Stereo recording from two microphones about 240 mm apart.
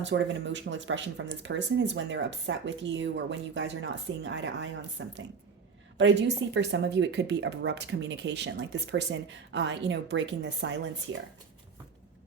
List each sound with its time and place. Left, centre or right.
0.0 s speech: right